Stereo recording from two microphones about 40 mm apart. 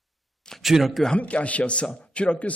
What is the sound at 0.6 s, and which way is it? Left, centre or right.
Speech, centre.